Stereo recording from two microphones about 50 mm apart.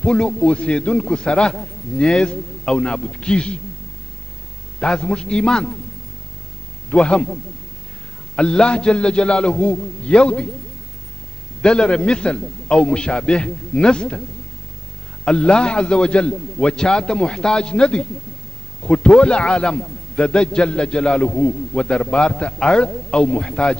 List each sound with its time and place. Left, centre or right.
0.0 s a man's voice: centre
4.7 s a man's voice: centre
6.9 s a man's voice: left
8.4 s a man's voice: centre
11.6 s a man's voice: centre
15.2 s a man's voice: centre